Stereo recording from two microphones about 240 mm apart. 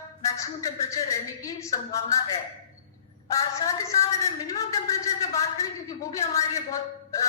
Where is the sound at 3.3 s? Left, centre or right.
Centre.